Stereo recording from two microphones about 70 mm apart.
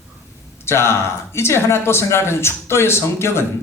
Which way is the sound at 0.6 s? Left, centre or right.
Left.